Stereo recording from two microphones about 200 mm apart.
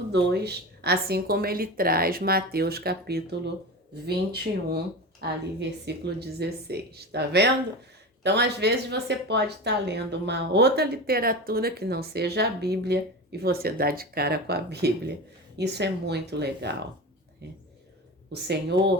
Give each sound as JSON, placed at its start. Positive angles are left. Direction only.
{"t": 0.1, "sound": "a woman's voice", "side_deg": -55}
{"t": 18.3, "sound": "speech", "side_deg": -55}